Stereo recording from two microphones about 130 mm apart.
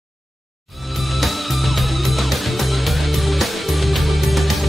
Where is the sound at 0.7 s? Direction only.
Centre (ahead or behind).